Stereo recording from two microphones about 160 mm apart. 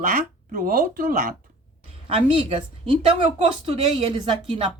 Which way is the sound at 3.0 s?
35° right (ahead or behind).